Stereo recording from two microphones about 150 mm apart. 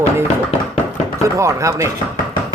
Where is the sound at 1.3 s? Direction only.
20° right (ahead or behind).